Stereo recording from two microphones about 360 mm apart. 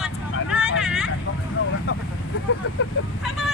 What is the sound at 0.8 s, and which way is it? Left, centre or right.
Hubbub, centre.